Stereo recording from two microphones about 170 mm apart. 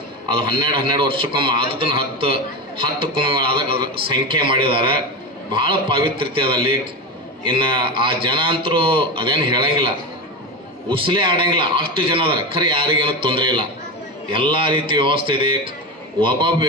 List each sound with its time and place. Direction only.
0.5 s a man's voice: 30° right (ahead or behind)
10.9 s a man's voice: 30° right (ahead or behind)